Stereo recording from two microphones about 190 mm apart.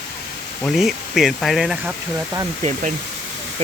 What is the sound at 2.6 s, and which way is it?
Speech, 35° right (ahead or behind).